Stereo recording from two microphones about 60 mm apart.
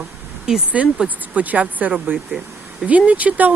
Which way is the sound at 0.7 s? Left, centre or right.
Right.